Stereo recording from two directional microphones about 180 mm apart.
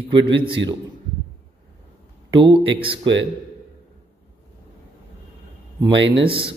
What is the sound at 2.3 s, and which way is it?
Speech, 30° right (ahead or behind).